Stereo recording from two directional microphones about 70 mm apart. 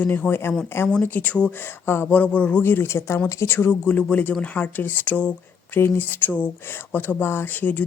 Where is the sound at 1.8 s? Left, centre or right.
Left.